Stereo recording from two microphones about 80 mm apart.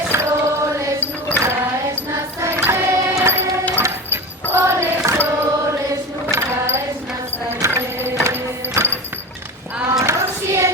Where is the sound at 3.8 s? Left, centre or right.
Right.